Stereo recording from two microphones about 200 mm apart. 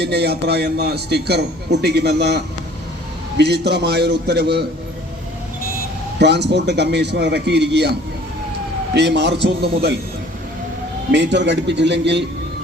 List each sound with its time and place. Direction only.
0.0 s a man's voice: 55° right (ahead or behind)
6.1 s a man's voice: 55° right (ahead or behind)
9.0 s a man's voice: 60° right (ahead or behind)
11.1 s a man's voice: 60° right (ahead or behind)